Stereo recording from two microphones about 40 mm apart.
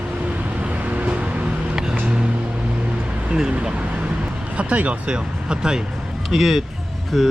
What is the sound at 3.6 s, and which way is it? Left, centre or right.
Vehicle, right.